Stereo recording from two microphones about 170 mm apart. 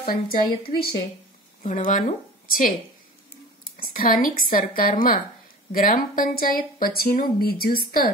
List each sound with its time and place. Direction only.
0.0 s speech: 60° left (ahead or behind)
1.6 s speech: 50° left (ahead or behind)
3.7 s speech: 55° left (ahead or behind)